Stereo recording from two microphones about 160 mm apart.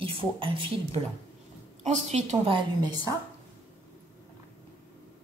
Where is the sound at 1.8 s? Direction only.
45° right (ahead or behind).